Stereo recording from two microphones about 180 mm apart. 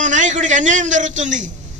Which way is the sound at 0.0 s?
45° right (ahead or behind).